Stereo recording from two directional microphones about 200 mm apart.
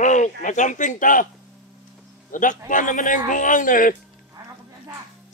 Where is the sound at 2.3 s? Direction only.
40° left (ahead or behind).